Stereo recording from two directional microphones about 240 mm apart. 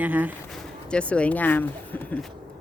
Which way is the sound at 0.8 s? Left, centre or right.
Centre.